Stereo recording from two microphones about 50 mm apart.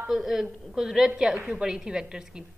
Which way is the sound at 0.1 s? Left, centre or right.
Centre.